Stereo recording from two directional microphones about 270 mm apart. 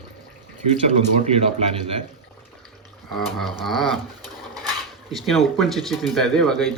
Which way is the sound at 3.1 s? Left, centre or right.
Centre.